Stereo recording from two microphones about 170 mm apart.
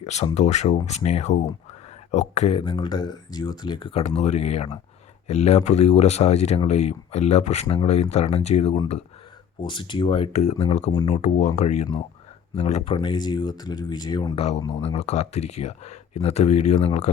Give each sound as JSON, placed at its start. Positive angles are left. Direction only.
{"t": 0.0, "sound": "speech", "side_deg": 40}
{"t": 14.3, "sound": "speech", "side_deg": 40}